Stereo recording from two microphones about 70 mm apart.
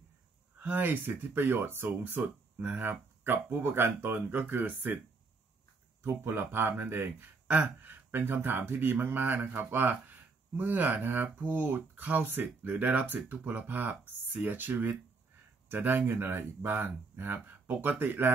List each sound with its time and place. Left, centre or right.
0.6 s speech: right
6.0 s speech: right
7.4 s speech: right